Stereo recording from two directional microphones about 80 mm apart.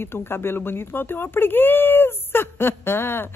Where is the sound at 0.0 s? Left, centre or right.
Left.